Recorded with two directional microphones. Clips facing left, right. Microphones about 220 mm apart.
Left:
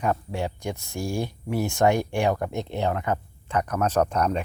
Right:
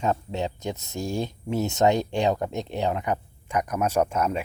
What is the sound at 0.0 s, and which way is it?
Speech, 25° right (ahead or behind).